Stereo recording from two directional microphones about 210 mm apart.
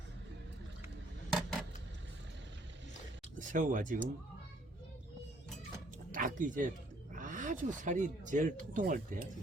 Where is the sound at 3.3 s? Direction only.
40° right (ahead or behind).